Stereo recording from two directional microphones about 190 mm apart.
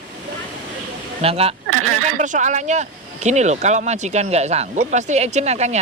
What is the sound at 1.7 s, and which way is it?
Speech, 90° right.